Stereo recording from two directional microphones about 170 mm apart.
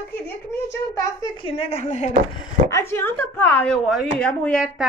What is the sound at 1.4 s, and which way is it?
Speech, 35° left (ahead or behind).